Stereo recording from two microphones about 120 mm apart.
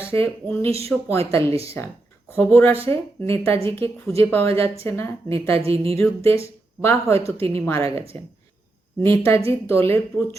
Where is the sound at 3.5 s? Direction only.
50° right (ahead or behind).